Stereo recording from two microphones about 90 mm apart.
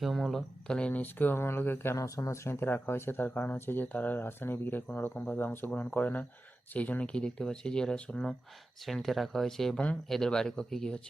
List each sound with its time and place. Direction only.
0.0 s speech: centre (ahead or behind); by 2.0 s 25° left (ahead or behind)
2.0 s speech: 35° left (ahead or behind); by 11.0 s 5° left (ahead or behind)